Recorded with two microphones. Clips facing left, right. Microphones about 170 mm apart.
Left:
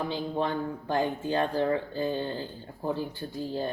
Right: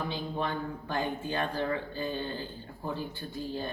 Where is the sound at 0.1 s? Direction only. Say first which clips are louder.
Left 4 dB; 35° left (ahead or behind).